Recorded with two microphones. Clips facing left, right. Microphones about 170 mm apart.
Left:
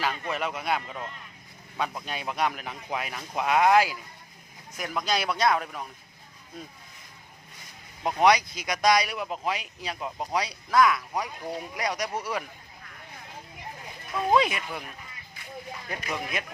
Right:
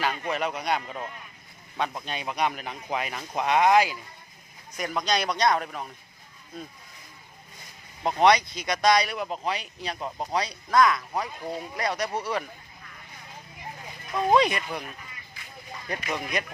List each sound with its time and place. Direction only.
0.0 s speech: centre (ahead or behind)
2.0 s speech: 5° left (ahead or behind)
8.0 s speech: 10° left (ahead or behind)
14.1 s speech: 5° left (ahead or behind)
15.9 s speech: centre (ahead or behind)